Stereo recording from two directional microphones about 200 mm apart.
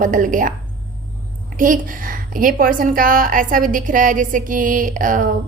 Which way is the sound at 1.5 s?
40° right (ahead or behind).